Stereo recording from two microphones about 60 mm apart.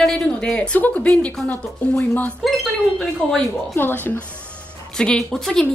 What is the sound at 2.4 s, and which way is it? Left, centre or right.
A woman's voice, centre.